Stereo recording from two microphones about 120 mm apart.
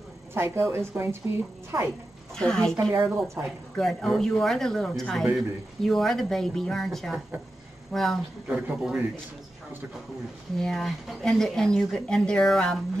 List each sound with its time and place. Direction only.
0.3 s a woman's voice: 20° right (ahead or behind)
2.3 s speech: 5° left (ahead or behind)
8.5 s a man's voice: 10° right (ahead or behind)
10.6 s speech: centre (ahead or behind)